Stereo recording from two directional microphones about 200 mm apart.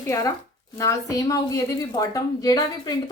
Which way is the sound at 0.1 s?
15° left (ahead or behind).